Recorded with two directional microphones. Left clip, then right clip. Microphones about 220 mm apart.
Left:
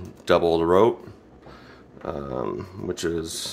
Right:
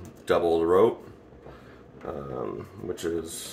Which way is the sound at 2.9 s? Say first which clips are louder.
Left 3 dB; 50° left (ahead or behind).